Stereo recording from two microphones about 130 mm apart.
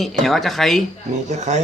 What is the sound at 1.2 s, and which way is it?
Speech, 60° right (ahead or behind).